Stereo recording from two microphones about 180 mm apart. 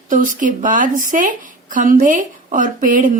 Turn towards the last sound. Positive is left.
turn(degrees=-45)  # may be behind; listen again after turning